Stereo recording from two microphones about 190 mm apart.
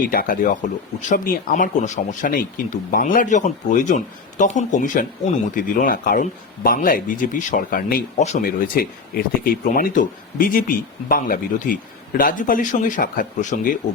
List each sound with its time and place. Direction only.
0.1 s speech: 50° left (ahead or behind)